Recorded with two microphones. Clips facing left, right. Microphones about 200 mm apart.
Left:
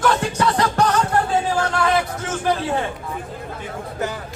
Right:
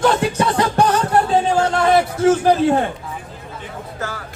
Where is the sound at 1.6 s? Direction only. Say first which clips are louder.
Right 5 dB; 30° right (ahead or behind).